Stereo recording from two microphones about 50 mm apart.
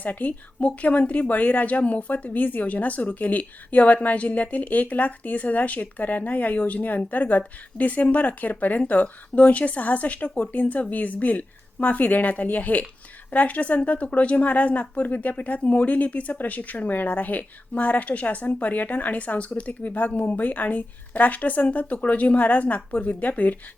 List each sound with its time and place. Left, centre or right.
0.0 s a woman's voice: left